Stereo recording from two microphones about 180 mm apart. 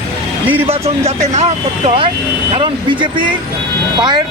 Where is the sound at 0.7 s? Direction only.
35° right (ahead or behind).